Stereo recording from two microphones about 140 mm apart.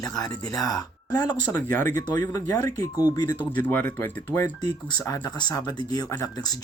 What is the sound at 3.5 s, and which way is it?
Speech, 15° left (ahead or behind).